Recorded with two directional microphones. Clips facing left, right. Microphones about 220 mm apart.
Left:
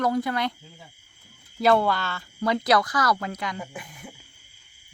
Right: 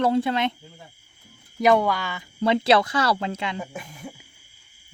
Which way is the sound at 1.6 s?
15° right (ahead or behind).